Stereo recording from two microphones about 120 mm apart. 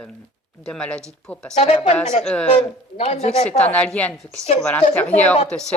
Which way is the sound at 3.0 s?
65° left (ahead or behind).